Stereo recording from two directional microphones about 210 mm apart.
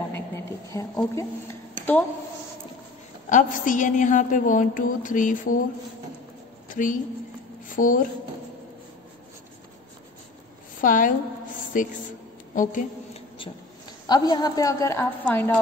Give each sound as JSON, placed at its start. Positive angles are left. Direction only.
{"t": 0.1, "sound": "a woman's voice", "side_deg": 15}
{"t": 3.3, "sound": "a woman's voice", "side_deg": 40}
{"t": 6.7, "sound": "a woman's voice", "side_deg": 40}
{"t": 10.8, "sound": "a woman's voice", "side_deg": 40}
{"t": 14.0, "sound": "a woman's voice", "side_deg": 20}